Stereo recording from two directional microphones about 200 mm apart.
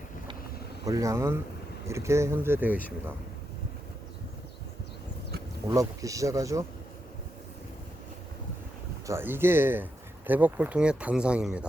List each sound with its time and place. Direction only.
0.9 s speech: 15° right (ahead or behind)
5.6 s speech: 15° right (ahead or behind)
9.0 s speech: 10° right (ahead or behind)